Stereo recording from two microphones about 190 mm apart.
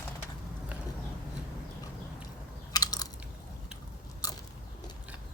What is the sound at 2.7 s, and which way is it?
Biting, 20° left (ahead or behind).